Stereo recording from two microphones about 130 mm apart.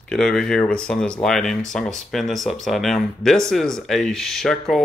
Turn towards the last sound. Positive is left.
turn(degrees=0)  # may be behind; listen again after turning